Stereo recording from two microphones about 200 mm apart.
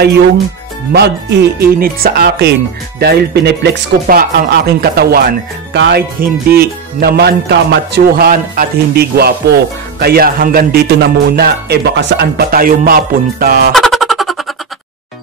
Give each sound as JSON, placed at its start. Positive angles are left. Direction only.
{"t": 0.9, "sound": "speech", "side_deg": -55}
{"t": 13.7, "sound": "music", "side_deg": 0}